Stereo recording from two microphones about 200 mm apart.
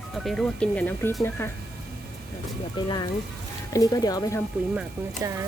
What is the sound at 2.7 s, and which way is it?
Speech, 20° left (ahead or behind).